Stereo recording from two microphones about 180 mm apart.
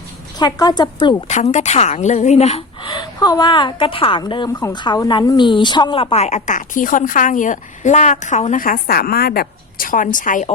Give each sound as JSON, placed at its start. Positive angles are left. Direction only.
{"t": 0.3, "sound": "a woman's voice", "side_deg": 20}
{"t": 1.3, "sound": "speech", "side_deg": 40}